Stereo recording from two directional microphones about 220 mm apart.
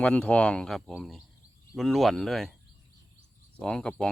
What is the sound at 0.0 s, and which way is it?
Speech, 5° left (ahead or behind).